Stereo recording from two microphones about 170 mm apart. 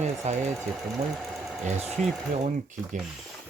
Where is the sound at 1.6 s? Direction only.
40° right (ahead or behind).